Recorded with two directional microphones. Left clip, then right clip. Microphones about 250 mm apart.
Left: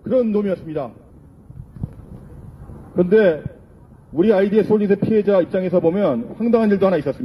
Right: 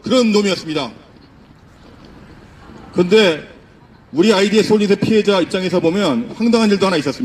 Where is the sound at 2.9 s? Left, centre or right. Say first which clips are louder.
Right 2 dB; right.